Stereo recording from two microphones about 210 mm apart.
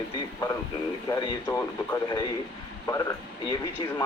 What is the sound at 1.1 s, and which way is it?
Speech, 15° left (ahead or behind).